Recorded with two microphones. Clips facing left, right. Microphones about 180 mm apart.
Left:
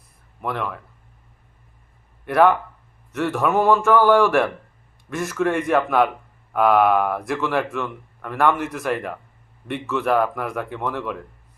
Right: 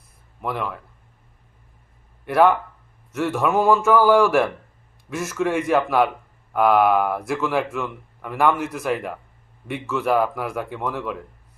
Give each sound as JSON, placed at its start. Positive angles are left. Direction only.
{"t": 0.4, "sound": "speech", "side_deg": -5}
{"t": 2.2, "sound": "speech", "side_deg": 0}